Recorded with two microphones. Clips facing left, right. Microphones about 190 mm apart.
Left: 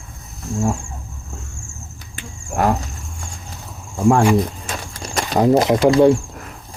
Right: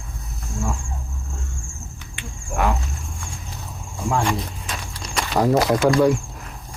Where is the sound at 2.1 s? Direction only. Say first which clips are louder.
Left 3 dB; 40° left (ahead or behind).